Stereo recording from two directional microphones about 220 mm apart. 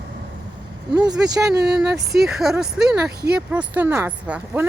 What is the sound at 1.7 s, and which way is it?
Speech, centre (ahead or behind).